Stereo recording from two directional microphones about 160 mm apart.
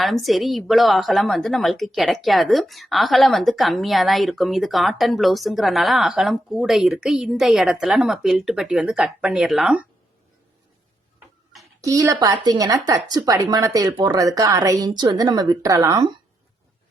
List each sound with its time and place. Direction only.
0.0 s a woman's voice: centre (ahead or behind)
11.8 s speech: 20° right (ahead or behind)